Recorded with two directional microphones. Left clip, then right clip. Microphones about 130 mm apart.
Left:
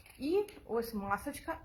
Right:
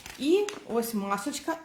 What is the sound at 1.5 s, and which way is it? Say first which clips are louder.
Speech: right 8 dB; 45° left (ahead or behind).